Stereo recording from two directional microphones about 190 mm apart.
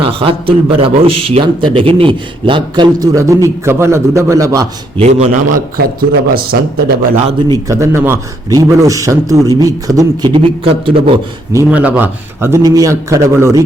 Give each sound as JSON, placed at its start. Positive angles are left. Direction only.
{"t": 0.0, "sound": "a man's voice", "side_deg": -30}
{"t": 4.9, "sound": "a man's voice", "side_deg": -35}
{"t": 5.7, "sound": "speech", "side_deg": -50}
{"t": 7.7, "sound": "a man's voice", "side_deg": -15}
{"t": 11.5, "sound": "a man's voice", "side_deg": -10}